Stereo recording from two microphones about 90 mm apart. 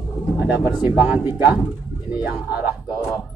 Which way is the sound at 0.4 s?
15° right (ahead or behind).